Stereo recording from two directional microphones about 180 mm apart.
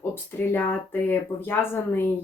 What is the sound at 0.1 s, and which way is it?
A woman's voice, 10° left (ahead or behind).